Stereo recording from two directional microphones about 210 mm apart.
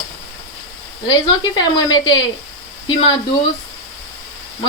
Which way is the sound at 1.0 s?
20° left (ahead or behind).